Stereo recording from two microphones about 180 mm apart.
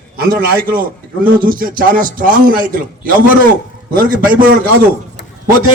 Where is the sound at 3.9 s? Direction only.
50° right (ahead or behind).